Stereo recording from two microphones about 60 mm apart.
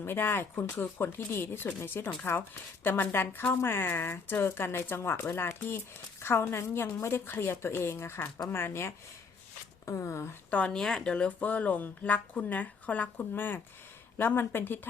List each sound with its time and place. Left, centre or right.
0.0 s a woman's voice: left
9.8 s a woman's voice: left
10.7 s speech: centre
11.3 s a woman's voice: left